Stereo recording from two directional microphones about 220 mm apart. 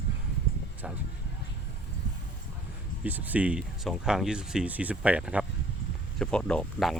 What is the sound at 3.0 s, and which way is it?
Speech, 5° right (ahead or behind).